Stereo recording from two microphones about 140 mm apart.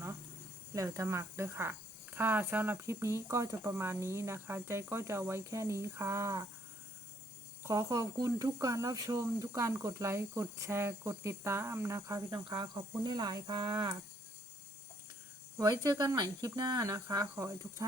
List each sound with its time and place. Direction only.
0.7 s speech: 20° right (ahead or behind)
7.6 s speech: 20° right (ahead or behind)
12.5 s speech: 35° right (ahead or behind)
15.5 s speech: 25° right (ahead or behind)